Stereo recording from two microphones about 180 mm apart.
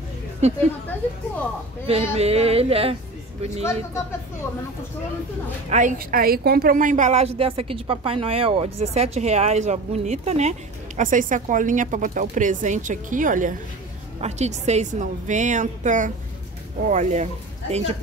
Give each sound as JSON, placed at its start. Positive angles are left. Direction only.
{"t": 0.4, "sound": "a woman's voice", "side_deg": -35}
{"t": 1.9, "sound": "a woman's voice", "side_deg": -35}
{"t": 5.7, "sound": "a woman's voice", "side_deg": -45}